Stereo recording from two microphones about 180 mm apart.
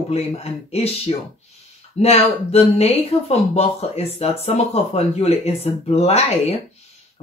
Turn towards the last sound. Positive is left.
turn(degrees=35)  # may be behind; listen again after turning